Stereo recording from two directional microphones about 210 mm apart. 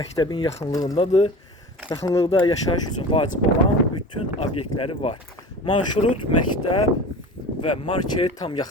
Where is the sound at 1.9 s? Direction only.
15° left (ahead or behind).